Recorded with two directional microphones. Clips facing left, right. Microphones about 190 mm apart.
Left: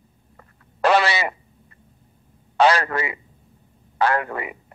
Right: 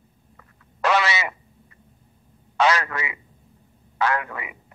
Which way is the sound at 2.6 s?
35° left (ahead or behind).